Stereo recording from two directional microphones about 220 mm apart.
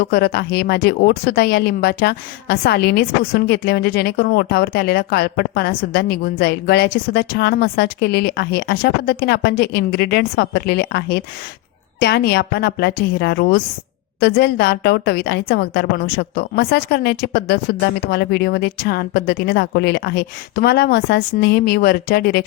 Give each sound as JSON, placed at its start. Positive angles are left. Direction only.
{"t": 0.0, "sound": "speech", "side_deg": 45}